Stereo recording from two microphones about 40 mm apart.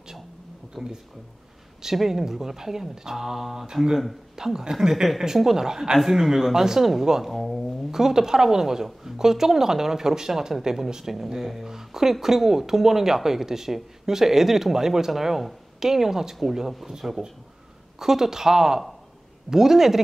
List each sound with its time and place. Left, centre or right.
0.8 s speech: centre
2.0 s a woman's voice: centre
5.9 s a woman's voice: centre
7.2 s speech: centre
7.9 s a woman's voice: centre